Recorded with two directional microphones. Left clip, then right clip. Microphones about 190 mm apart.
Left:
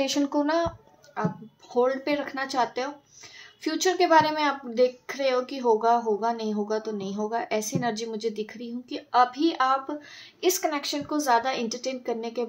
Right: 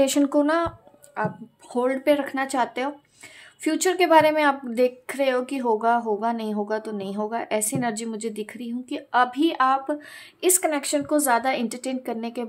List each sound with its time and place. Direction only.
0.0 s speech: 35° right (ahead or behind)